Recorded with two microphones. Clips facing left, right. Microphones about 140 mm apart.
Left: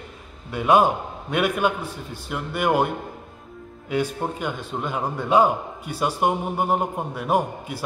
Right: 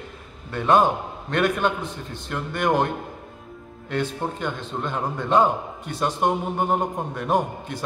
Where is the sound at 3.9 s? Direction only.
10° left (ahead or behind).